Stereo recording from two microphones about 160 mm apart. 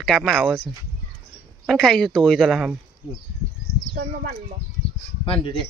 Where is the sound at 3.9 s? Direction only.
65° right (ahead or behind).